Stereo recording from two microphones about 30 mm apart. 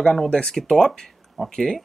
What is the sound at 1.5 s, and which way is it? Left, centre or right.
Speech, centre.